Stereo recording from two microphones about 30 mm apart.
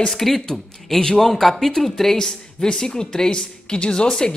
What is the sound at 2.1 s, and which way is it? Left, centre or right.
Speech, left.